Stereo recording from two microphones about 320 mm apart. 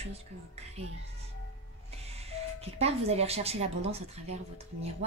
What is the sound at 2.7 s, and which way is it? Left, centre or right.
A woman's voice, centre.